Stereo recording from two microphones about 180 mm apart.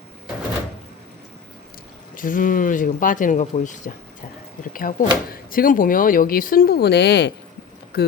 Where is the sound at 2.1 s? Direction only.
50° left (ahead or behind).